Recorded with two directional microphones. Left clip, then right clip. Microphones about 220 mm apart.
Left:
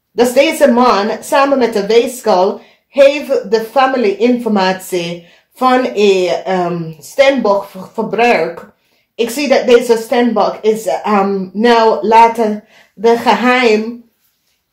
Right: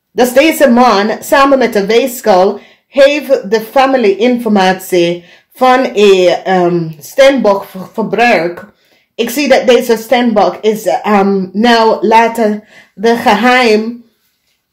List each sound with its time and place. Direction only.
0.1 s a woman's voice: 40° right (ahead or behind)